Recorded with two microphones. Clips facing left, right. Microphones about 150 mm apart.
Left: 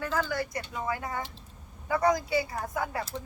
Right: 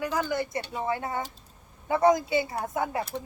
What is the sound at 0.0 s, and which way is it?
A woman's voice, 15° right (ahead or behind).